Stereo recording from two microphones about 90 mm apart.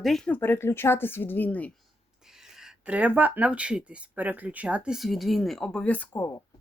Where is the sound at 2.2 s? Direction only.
5° right (ahead or behind).